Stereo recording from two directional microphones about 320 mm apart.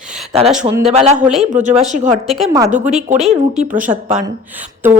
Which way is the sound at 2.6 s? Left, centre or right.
Right.